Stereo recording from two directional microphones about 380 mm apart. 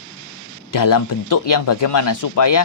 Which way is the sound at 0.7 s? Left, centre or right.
Left.